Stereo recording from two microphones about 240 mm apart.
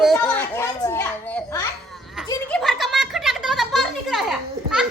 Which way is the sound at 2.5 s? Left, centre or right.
Centre.